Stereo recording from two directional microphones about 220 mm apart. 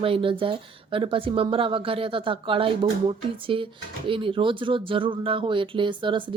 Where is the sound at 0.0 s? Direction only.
25° right (ahead or behind).